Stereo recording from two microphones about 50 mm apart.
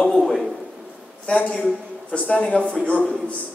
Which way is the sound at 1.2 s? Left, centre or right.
Left.